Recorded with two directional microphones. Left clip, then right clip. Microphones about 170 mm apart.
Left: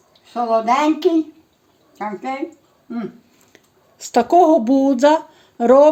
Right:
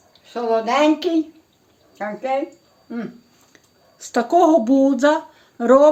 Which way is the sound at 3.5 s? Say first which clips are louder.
Left 2 dB; 30° left (ahead or behind).